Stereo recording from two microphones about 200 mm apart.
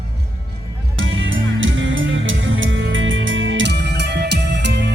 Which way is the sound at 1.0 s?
70° right (ahead or behind).